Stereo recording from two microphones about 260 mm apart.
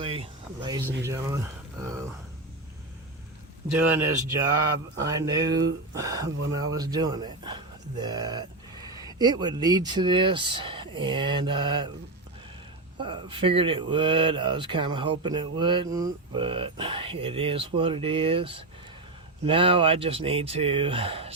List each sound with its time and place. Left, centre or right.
0.0 s a sound: centre
1.0 s speech: centre
3.8 s speech: centre
13.0 s speech: centre